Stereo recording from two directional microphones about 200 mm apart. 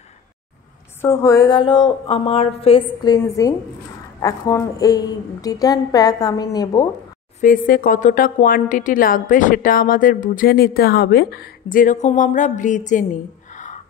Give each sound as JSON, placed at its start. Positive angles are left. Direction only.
{"t": 1.0, "sound": "a woman's voice", "side_deg": 15}
{"t": 7.3, "sound": "speech", "side_deg": 45}
{"t": 13.5, "sound": "a sound", "side_deg": 40}